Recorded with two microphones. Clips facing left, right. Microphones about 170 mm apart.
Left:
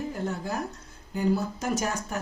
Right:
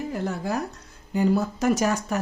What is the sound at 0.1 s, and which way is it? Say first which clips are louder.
Speech: right 4 dB; 80° right.